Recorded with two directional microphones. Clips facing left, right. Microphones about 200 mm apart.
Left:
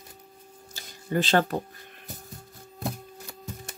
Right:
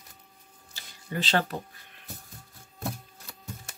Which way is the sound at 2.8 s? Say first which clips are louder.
Left 2 dB; 15° left (ahead or behind).